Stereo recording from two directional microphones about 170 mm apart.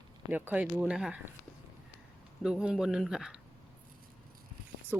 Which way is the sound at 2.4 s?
5° right (ahead or behind).